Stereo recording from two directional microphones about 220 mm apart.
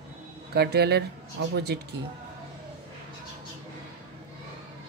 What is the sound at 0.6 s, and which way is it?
Speech, 50° right (ahead or behind).